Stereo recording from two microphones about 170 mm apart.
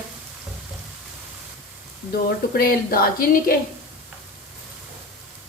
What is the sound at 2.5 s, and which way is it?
Speech, 60° left (ahead or behind).